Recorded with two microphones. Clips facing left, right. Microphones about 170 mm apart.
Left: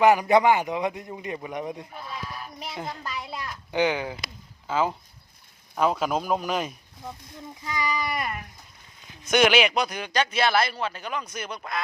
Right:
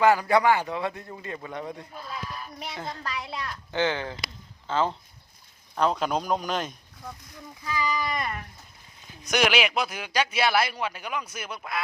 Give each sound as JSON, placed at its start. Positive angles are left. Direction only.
{"t": 0.0, "sound": "a man's voice", "side_deg": 20}
{"t": 3.0, "sound": "a man's voice", "side_deg": 0}
{"t": 7.6, "sound": "a man's voice", "side_deg": 20}